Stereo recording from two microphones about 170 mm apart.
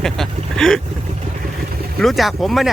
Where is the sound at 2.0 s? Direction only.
Centre (ahead or behind).